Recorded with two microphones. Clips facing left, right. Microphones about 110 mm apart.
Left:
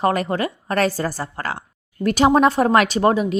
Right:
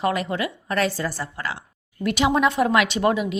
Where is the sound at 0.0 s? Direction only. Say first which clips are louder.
Left 4 dB; 40° left (ahead or behind).